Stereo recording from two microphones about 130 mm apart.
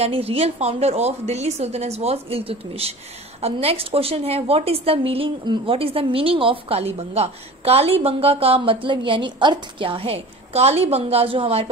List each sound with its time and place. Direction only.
0.0 s a woman's voice: 50° right (ahead or behind)